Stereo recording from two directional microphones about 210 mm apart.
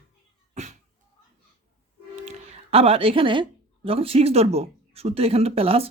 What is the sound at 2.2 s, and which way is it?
A woman's voice, 30° right (ahead or behind).